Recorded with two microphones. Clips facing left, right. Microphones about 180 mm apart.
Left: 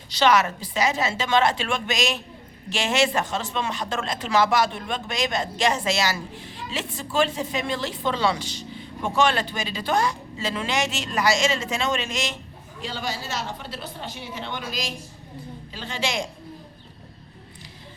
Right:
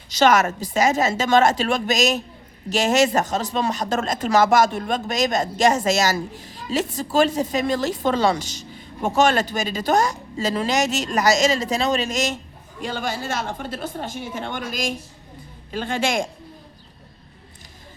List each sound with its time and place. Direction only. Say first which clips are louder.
0.1 s speech: right 3 dB; 45° right (ahead or behind)